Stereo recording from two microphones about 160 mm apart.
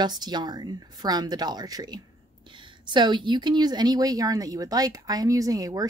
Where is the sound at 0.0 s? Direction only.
25° right (ahead or behind).